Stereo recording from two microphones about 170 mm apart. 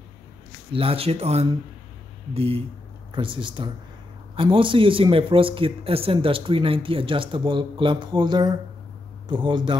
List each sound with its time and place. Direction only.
0.7 s speech: 35° right (ahead or behind)